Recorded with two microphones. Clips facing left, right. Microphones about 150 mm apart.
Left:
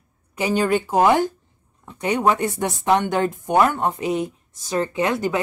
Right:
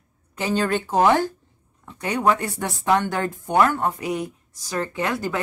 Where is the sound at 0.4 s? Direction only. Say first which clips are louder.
Left 3 dB; 10° left (ahead or behind).